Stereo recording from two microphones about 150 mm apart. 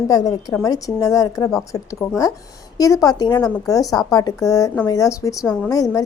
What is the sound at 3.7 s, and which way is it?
A woman's voice, 20° left (ahead or behind).